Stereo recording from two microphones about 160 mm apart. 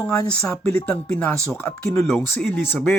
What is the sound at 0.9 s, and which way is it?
Speech, 5° left (ahead or behind).